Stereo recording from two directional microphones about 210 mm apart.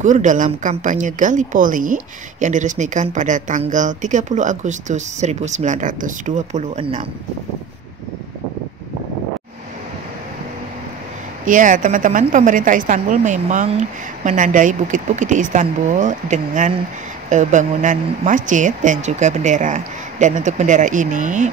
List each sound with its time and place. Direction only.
0.0 s speech: 35° right (ahead or behind)
11.4 s speech: 40° right (ahead or behind)